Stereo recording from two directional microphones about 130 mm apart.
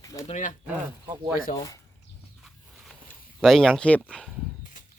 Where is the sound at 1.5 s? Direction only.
25° left (ahead or behind).